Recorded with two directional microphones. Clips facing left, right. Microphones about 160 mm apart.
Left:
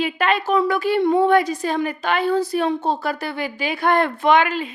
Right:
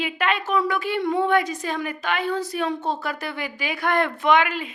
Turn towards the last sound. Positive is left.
turn(degrees=30)  # may be behind; listen again after turning